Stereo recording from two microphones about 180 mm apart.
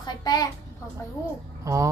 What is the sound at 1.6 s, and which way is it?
Speech, 20° right (ahead or behind).